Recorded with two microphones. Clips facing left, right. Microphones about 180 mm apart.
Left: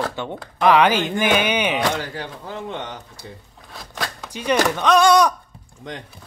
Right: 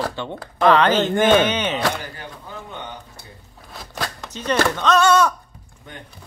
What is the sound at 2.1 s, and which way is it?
Speech, 90° left.